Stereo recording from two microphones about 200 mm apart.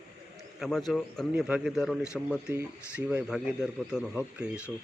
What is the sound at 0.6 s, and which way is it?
A man's voice, centre (ahead or behind).